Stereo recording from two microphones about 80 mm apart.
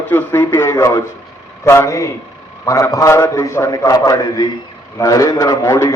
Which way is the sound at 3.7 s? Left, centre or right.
Left.